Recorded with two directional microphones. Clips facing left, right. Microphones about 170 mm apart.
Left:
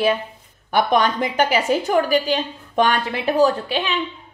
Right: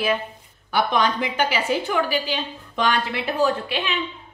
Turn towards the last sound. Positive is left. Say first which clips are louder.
# left 3 dB
turn(degrees=35)  # may be behind; listen again after turning